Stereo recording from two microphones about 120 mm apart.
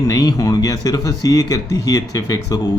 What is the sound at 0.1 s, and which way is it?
Speech, 30° left (ahead or behind).